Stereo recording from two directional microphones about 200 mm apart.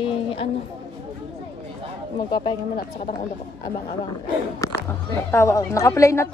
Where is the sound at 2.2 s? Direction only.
20° left (ahead or behind).